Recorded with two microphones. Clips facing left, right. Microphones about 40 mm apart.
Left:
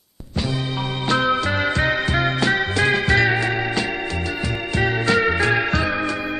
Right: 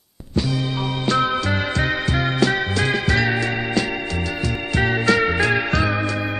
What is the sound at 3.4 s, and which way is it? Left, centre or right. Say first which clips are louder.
Organ: even; centre.